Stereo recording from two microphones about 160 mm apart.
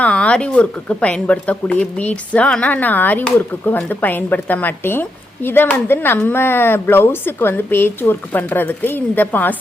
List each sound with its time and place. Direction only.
0.0 s speech: 10° left (ahead or behind)